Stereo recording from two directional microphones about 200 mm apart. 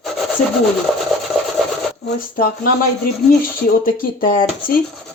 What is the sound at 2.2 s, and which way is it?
Speech, 45° left (ahead or behind).